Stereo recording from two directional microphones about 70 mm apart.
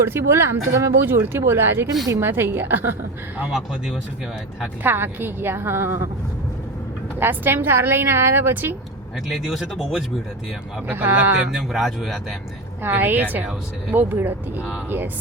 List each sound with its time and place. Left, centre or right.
0.0 s speech: right
1.0 s speech: right
4.8 s speech: right
7.2 s speech: right
9.3 s speech: centre
10.8 s a woman's voice: right
11.5 s speech: centre
12.8 s a woman's voice: right